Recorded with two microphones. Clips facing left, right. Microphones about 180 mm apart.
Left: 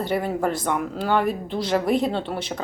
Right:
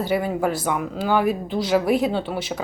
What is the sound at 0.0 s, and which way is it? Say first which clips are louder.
Speech: right 1 dB; centre (ahead or behind).